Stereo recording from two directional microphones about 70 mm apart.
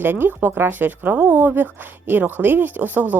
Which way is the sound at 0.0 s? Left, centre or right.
Right.